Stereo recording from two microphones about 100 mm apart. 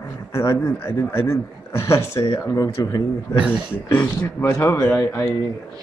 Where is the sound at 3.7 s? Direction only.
25° left (ahead or behind).